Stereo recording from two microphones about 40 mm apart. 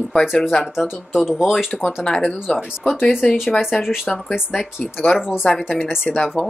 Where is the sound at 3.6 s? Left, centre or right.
Centre.